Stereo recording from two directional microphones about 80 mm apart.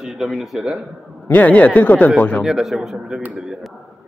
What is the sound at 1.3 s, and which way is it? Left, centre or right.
Speech, centre.